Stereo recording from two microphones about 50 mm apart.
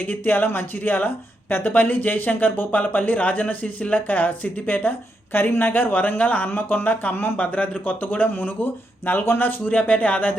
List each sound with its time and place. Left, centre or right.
0.0 s speech: left
6.5 s speech: left
7.3 s speech: left